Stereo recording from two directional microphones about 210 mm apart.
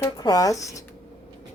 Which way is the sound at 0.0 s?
15° left (ahead or behind).